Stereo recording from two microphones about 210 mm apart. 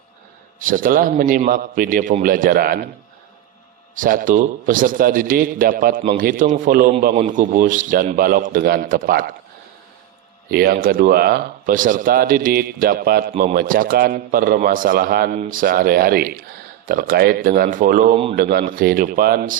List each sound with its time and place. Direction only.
0.6 s a man's voice: 40° right (ahead or behind)
3.9 s a man's voice: 40° right (ahead or behind)
6.0 s a man's voice: 30° right (ahead or behind)
10.5 s a man's voice: 45° right (ahead or behind)